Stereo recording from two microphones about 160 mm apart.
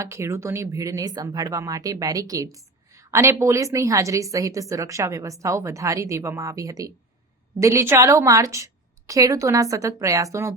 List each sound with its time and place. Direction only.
0.0 s speech: 15° right (ahead or behind)